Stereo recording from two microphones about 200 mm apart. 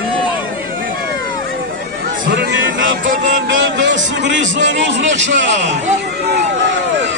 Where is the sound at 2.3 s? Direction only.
65° right (ahead or behind).